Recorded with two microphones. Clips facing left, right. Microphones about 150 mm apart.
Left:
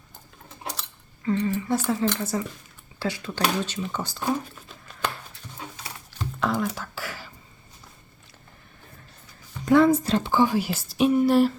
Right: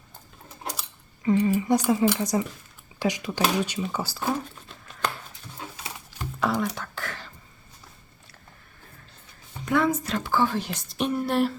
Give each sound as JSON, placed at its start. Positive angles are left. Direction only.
{"t": 0.7, "sound": "speech", "side_deg": -10}
{"t": 5.7, "sound": "whispering", "side_deg": -5}
{"t": 9.6, "sound": "a sound", "side_deg": 30}
{"t": 10.3, "sound": "speech", "side_deg": 10}